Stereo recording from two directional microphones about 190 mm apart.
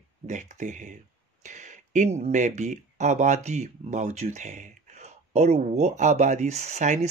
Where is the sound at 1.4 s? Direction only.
40° right (ahead or behind).